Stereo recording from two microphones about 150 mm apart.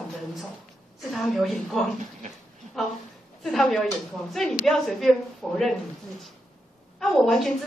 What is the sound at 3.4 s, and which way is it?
A woman's voice, 5° left (ahead or behind).